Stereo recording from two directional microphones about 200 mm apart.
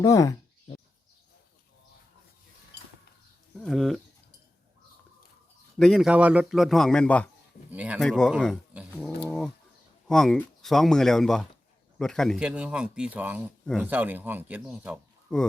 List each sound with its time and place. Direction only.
0.0 s speech: 15° left (ahead or behind)
3.6 s a man's voice: centre (ahead or behind)
5.8 s a man's voice: centre (ahead or behind)
7.7 s speech: 5° right (ahead or behind)
10.1 s a man's voice: centre (ahead or behind)
15.3 s a man's voice: 5° left (ahead or behind)